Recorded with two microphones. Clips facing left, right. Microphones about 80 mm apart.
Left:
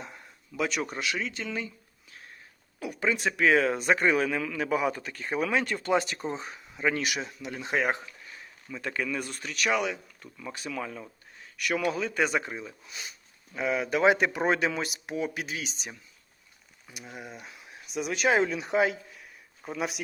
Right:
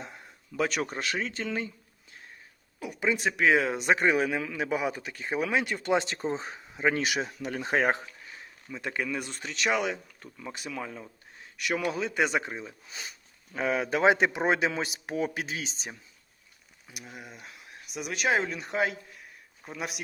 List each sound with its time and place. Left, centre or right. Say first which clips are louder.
0.5 s speech: right 1 dB; right
3.0 s speech: even; centre
7.3 s speech: right 1 dB; right; by 11.0 s centre
11.3 s speech: left 1 dB; right
12.9 s speech: even; right
14.3 s speech: even; centre
16.8 s speech: left 2 dB; centre